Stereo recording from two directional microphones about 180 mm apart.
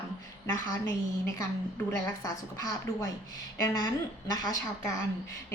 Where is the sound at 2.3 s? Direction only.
20° left (ahead or behind).